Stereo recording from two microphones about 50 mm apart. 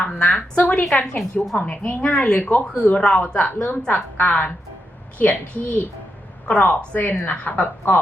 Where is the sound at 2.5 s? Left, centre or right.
Left.